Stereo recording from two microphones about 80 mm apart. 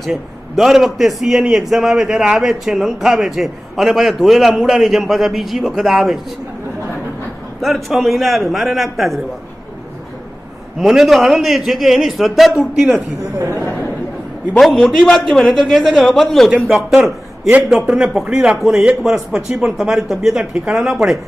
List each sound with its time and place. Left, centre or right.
0.0 s a man's voice: centre
7.6 s a man's voice: centre
10.8 s a man's voice: centre
13.2 s speech: right
14.9 s a man's voice: centre